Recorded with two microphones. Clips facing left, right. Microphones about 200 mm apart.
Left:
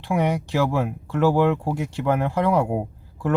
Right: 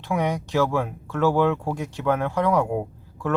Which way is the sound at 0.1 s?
15° left (ahead or behind).